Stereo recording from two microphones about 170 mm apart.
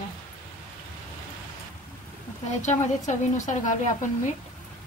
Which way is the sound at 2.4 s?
45° left (ahead or behind).